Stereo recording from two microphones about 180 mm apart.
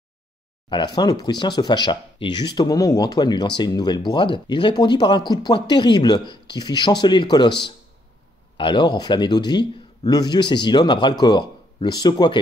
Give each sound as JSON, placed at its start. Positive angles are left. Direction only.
{"t": 0.7, "sound": "speech", "side_deg": 25}